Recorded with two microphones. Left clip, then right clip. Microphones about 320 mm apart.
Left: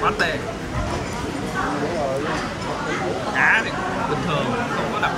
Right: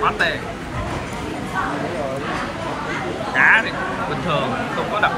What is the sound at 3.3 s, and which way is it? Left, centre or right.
Speech, right.